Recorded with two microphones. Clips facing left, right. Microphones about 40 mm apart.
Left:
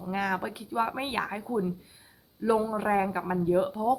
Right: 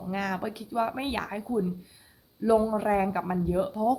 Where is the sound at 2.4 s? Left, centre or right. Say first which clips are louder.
Right 3 dB; centre.